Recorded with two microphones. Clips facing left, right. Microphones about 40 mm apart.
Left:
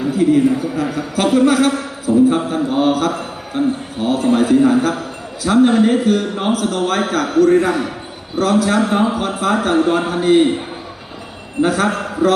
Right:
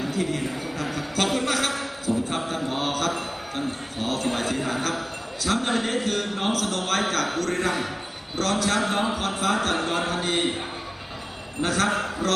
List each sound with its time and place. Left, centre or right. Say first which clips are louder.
0.0 s a man's voice: left 13 dB; centre
11.6 s a man's voice: left 7 dB; centre